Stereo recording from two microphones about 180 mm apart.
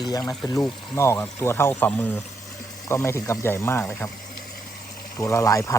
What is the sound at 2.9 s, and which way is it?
Speech, 15° left (ahead or behind).